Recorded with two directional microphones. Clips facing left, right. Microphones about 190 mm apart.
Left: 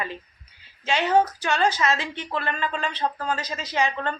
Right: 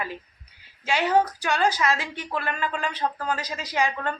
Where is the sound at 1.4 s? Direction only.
10° right (ahead or behind).